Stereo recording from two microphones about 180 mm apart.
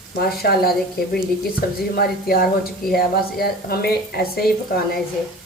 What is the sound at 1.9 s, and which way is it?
A woman's voice, 55° left (ahead or behind).